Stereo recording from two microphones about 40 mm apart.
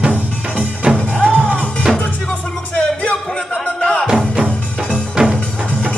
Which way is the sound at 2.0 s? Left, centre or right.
Left.